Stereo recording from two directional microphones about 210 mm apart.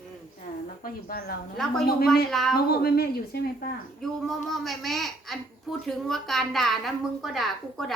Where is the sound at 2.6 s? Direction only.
45° left (ahead or behind).